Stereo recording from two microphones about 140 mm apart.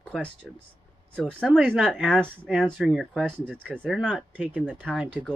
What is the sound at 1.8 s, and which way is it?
Speech, 5° right (ahead or behind).